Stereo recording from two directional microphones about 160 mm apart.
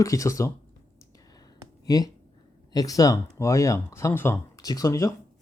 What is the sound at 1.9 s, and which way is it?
Speech, 25° left (ahead or behind).